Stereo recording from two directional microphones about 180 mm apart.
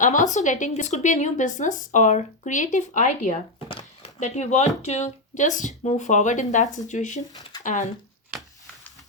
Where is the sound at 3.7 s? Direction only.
30° left (ahead or behind).